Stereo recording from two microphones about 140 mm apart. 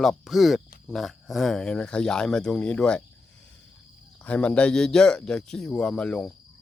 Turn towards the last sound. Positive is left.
turn(degrees=5)  # may be behind; listen again after turning